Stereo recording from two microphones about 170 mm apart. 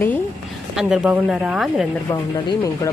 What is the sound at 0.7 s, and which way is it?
A woman's voice, 5° right (ahead or behind).